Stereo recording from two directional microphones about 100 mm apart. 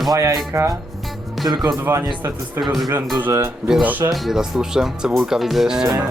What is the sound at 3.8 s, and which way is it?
Speech, 15° right (ahead or behind).